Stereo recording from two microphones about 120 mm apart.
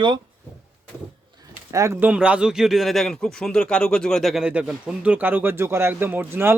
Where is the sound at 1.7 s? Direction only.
25° right (ahead or behind).